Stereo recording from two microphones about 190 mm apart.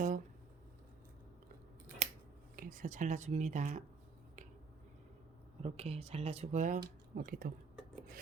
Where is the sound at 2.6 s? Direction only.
45° right (ahead or behind).